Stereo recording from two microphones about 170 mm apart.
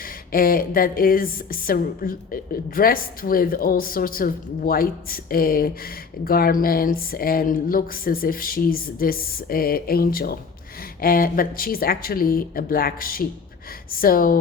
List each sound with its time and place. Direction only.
0.0 s speech: 55° left (ahead or behind)